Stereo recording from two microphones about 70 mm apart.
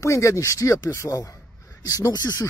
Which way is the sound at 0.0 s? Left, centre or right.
Left.